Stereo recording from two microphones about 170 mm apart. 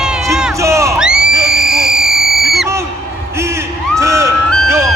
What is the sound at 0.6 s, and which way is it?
Music, 20° right (ahead or behind).